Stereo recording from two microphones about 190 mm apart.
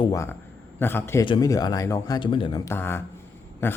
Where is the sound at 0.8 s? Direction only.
10° left (ahead or behind).